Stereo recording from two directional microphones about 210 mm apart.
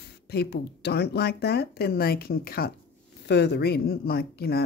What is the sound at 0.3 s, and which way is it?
Speech, 50° left (ahead or behind).